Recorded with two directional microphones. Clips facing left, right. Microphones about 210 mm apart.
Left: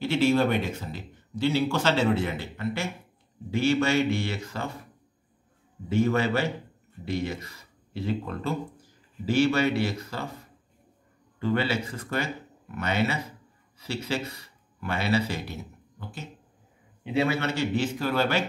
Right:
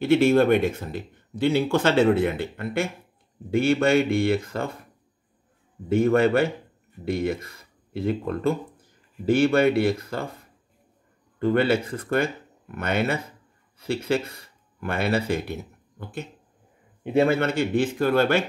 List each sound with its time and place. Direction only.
0.0 s speech: 55° right (ahead or behind)
5.9 s speech: 55° right (ahead or behind)
11.3 s speech: 55° right (ahead or behind)
17.0 s speech: 50° right (ahead or behind)